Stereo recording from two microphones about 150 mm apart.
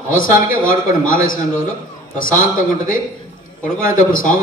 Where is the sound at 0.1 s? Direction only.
65° left (ahead or behind).